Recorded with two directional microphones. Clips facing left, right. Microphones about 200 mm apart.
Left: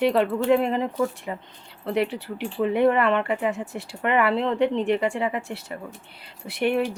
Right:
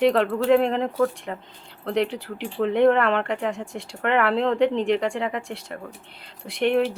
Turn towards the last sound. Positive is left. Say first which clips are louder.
# right 2 dB
turn(degrees=10)  # may be behind; listen again after turning